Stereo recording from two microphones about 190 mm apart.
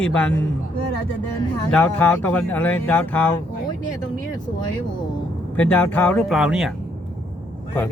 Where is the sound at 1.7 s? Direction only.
10° left (ahead or behind).